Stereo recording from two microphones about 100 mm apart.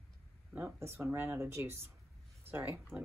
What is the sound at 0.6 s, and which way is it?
Speech, 25° right (ahead or behind).